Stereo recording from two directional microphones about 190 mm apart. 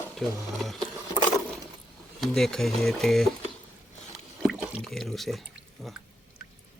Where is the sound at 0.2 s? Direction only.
Centre (ahead or behind).